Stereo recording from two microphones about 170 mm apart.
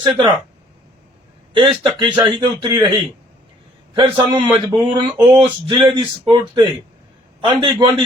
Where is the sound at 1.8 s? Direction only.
30° right (ahead or behind).